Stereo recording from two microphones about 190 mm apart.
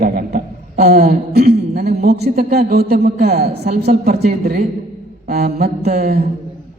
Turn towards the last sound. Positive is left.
turn(degrees=-55)  # may be behind; listen again after turning